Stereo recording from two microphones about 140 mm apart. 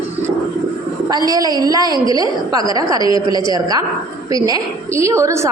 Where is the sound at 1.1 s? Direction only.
25° right (ahead or behind).